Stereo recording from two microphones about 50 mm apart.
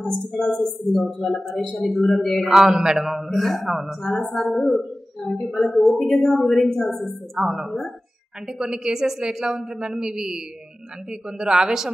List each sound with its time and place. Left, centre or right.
0.0 s a man's voice: centre
2.5 s a man's voice: centre
7.3 s a woman's voice: centre